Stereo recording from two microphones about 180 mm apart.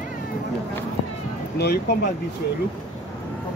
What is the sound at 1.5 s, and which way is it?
Speech, 60° left (ahead or behind).